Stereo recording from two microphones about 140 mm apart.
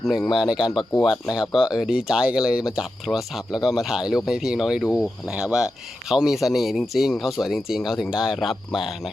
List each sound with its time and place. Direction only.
0.0 s speech: centre (ahead or behind)
1.0 s speech: 25° left (ahead or behind)
1.4 s speech: 5° right (ahead or behind)